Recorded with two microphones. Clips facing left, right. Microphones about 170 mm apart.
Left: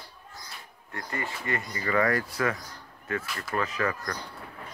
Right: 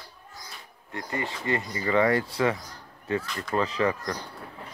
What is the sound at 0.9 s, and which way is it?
Speech, 20° right (ahead or behind).